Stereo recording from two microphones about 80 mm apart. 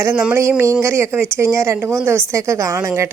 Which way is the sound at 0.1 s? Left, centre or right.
Right.